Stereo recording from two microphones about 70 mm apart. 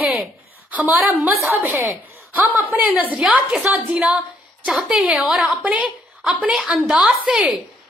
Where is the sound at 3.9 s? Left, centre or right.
Centre.